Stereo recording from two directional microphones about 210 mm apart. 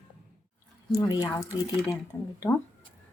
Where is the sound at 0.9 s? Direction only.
15° left (ahead or behind).